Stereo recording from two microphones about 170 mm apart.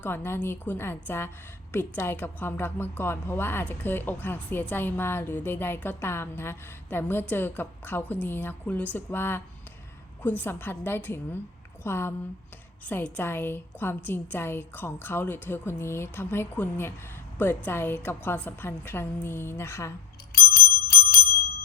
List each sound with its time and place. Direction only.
0.0 s a woman's voice: 10° left (ahead or behind)
20.3 s bicycle bell: 60° left (ahead or behind)